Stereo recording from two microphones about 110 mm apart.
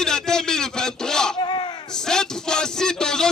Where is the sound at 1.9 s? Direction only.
5° left (ahead or behind).